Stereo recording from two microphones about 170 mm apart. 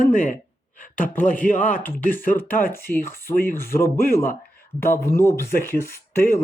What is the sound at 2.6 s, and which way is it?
Speech, 60° left (ahead or behind).